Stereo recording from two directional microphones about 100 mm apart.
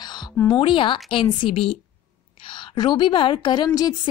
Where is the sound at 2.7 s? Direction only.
45° left (ahead or behind).